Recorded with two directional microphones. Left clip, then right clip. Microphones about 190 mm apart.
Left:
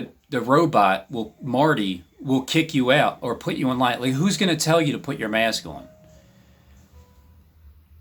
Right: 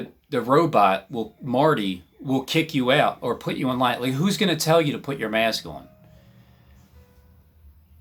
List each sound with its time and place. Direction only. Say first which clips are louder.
0.3 s speech: even; 5° left (ahead or behind)